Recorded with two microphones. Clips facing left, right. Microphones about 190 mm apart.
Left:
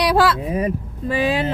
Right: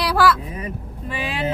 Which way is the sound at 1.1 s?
40° left (ahead or behind).